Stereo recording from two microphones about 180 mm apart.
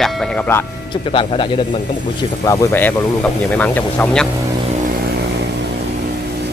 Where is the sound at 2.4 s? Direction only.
15° left (ahead or behind).